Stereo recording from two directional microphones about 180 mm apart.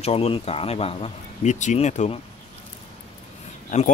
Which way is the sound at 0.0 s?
35° left (ahead or behind).